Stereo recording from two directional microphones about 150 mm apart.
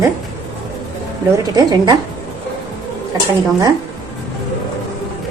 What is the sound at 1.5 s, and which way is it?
Speech, 25° right (ahead or behind).